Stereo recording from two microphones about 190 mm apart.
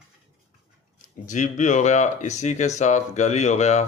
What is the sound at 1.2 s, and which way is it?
Speech, 40° left (ahead or behind).